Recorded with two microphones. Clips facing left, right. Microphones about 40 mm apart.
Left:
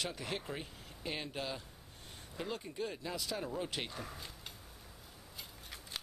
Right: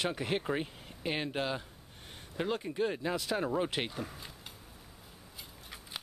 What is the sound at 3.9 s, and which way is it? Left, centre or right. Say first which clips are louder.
Speech: right 4 dB; centre.